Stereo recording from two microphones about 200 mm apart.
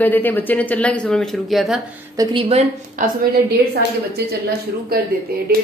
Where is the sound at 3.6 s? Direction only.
55° right (ahead or behind).